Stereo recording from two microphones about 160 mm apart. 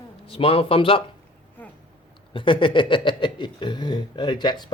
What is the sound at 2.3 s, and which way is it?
Speech, 30° left (ahead or behind).